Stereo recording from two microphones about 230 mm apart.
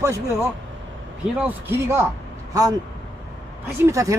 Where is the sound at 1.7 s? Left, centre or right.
Centre.